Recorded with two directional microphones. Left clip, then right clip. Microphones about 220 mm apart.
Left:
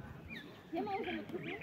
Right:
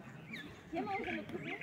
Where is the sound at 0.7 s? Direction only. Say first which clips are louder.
Even; 25° right (ahead or behind).